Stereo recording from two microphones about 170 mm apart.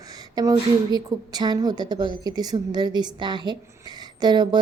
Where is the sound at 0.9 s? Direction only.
25° right (ahead or behind).